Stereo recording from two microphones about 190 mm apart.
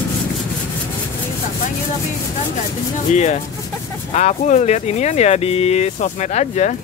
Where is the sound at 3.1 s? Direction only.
40° left (ahead or behind).